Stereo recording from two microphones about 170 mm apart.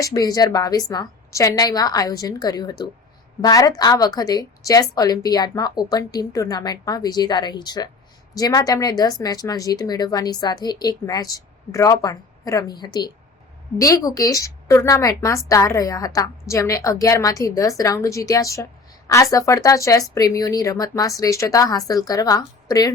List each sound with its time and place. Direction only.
0.0 s a woman's voice: 20° left (ahead or behind)